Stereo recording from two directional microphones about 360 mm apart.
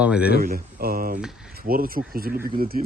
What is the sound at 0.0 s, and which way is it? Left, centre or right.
Speech, centre.